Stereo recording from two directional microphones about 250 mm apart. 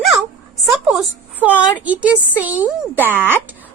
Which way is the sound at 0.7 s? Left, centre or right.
Centre.